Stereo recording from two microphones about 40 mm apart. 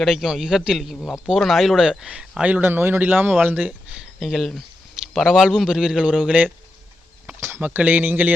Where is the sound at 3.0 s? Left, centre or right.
Right.